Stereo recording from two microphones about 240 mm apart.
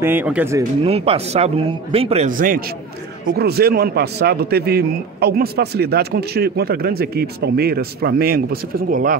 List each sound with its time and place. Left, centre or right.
0.0 s speech: centre
0.8 s a man's voice: right